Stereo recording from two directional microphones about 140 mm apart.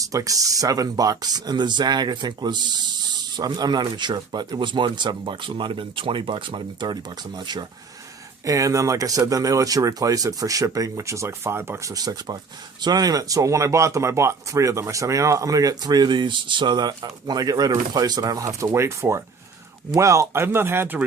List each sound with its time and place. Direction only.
0.0 s speech: 25° right (ahead or behind)